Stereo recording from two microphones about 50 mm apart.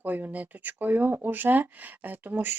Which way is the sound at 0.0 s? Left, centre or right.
Right.